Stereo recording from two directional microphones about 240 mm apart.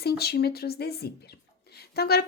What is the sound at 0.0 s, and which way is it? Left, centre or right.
Speech, left.